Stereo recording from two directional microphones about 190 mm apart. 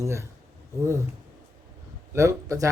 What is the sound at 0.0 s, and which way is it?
Speech, 15° right (ahead or behind).